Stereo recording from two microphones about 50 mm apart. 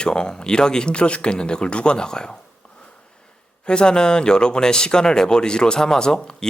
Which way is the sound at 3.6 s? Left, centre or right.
Centre.